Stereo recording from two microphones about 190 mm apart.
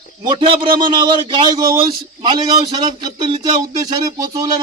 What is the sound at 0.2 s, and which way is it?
A man's voice, 25° right (ahead or behind).